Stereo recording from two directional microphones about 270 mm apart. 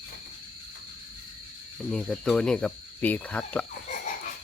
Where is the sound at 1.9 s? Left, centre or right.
Centre.